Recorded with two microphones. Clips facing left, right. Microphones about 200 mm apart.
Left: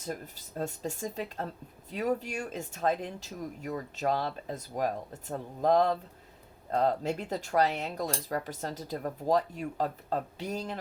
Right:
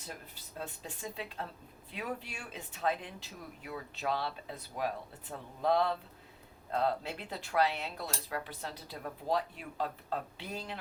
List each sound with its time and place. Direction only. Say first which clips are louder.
0.0 s speech: left 9 dB; 45° left (ahead or behind)